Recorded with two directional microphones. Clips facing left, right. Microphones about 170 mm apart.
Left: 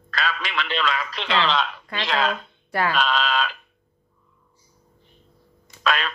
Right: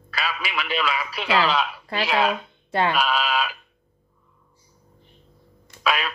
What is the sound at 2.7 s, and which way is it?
Speech, 25° right (ahead or behind).